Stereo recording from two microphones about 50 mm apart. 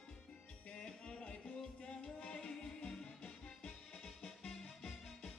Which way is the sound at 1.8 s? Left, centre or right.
Left.